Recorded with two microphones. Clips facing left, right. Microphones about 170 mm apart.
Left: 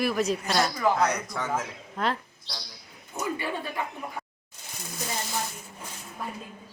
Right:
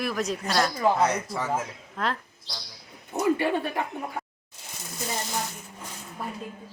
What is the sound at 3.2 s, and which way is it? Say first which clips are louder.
Speech: right 7 dB; 60° right (ahead or behind).